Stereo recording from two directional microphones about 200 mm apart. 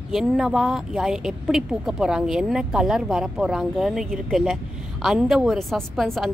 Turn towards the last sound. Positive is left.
turn(degrees=0)  # may be behind; listen again after turning